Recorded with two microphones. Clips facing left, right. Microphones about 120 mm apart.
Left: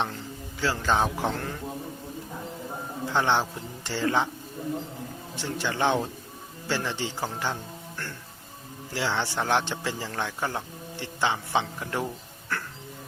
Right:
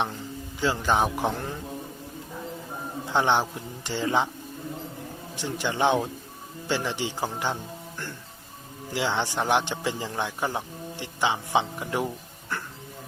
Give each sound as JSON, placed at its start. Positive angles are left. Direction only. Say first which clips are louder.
{"t": 0.6, "sound": "speech", "louder": "right 1 dB", "side_deg": -15}
{"t": 3.1, "sound": "speech", "louder": "right 2 dB", "side_deg": -15}
{"t": 5.4, "sound": "speech", "louder": "right 2 dB", "side_deg": -15}
{"t": 12.5, "sound": "a sound", "louder": "left 1 dB", "side_deg": -15}